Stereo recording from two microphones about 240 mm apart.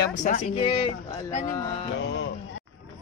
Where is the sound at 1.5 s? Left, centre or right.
Centre.